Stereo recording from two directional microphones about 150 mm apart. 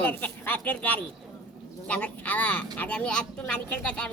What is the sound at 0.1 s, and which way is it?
A woman's voice, 10° left (ahead or behind).